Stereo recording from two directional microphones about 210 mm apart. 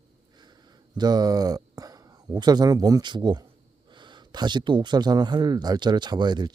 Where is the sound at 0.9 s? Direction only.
20° right (ahead or behind).